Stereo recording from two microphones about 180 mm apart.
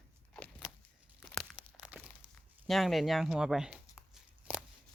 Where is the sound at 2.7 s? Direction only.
Centre (ahead or behind).